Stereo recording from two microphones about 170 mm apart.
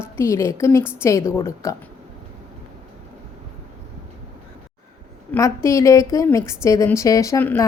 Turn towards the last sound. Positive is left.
turn(degrees=15)  # may be behind; listen again after turning